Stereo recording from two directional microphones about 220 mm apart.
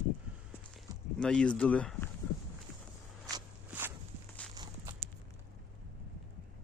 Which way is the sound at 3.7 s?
10° right (ahead or behind).